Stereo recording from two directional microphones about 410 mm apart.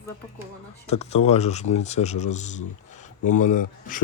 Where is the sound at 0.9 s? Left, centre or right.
Centre.